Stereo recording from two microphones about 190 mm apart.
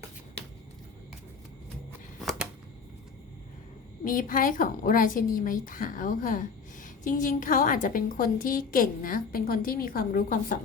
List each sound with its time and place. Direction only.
4.0 s a woman's voice: 45° left (ahead or behind)